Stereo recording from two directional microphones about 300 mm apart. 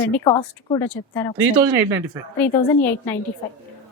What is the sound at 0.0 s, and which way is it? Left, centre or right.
A woman's voice, centre.